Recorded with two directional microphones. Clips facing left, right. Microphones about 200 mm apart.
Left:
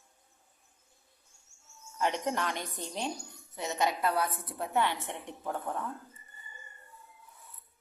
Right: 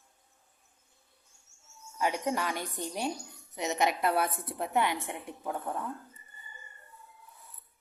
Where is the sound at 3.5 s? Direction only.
20° right (ahead or behind).